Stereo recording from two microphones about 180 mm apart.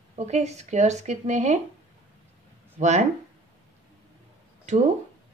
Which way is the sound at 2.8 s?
40° right (ahead or behind).